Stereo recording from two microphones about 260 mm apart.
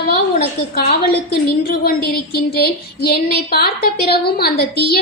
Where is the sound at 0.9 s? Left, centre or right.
Left.